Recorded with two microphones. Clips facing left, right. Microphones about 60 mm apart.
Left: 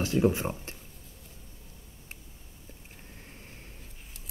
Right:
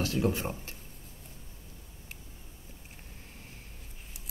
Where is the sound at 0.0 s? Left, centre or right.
Left.